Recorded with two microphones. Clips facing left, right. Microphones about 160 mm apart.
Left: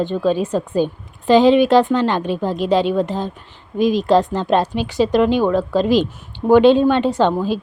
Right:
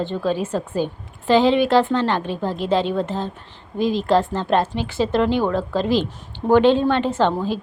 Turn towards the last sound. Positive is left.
turn(degrees=15)  # may be behind; listen again after turning